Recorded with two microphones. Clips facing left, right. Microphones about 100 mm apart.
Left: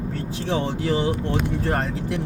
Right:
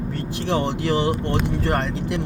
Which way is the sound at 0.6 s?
90° right.